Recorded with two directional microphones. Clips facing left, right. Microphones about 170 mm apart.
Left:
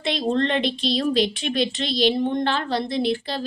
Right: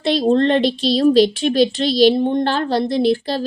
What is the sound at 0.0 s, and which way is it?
Speech, 35° right (ahead or behind).